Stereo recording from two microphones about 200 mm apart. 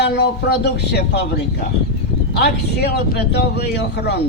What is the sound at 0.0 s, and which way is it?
A man's voice, 55° left (ahead or behind).